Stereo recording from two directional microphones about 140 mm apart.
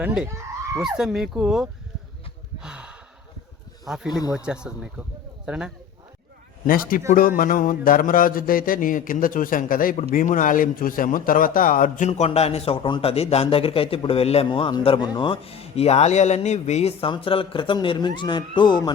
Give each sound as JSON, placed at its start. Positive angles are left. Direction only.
{"t": 0.0, "sound": "speech", "side_deg": -10}
{"t": 2.6, "sound": "gasp", "side_deg": -5}
{"t": 3.8, "sound": "speech", "side_deg": 0}
{"t": 4.2, "sound": "speech", "side_deg": 25}
{"t": 4.4, "sound": "speech", "side_deg": -5}
{"t": 6.7, "sound": "speech", "side_deg": 85}